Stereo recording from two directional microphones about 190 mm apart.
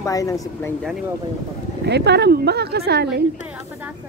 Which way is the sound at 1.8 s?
60° right (ahead or behind).